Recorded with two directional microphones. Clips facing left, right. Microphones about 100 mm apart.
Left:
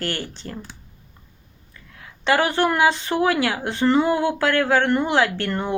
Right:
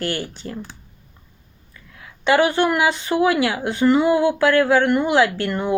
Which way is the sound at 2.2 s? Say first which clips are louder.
Right 3 dB; 35° left (ahead or behind).